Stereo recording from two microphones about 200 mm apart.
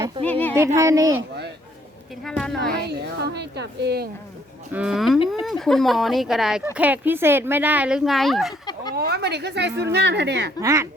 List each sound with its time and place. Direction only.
0.3 s a sound: 10° left (ahead or behind)
0.8 s speech: 15° right (ahead or behind)
2.2 s speech: 5° left (ahead or behind)
2.8 s a woman's voice: 55° right (ahead or behind)
4.7 s speech: 5° right (ahead or behind)
8.6 s a sound: 20° left (ahead or behind)
9.0 s a woman's voice: 55° right (ahead or behind)
10.6 s speech: 15° right (ahead or behind)